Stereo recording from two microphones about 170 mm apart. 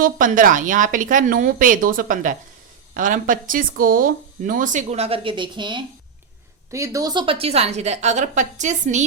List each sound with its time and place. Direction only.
0.0 s speech: 55° right (ahead or behind); by 5.8 s 30° right (ahead or behind)
6.7 s a woman's voice: 15° right (ahead or behind); by 9.0 s 45° right (ahead or behind)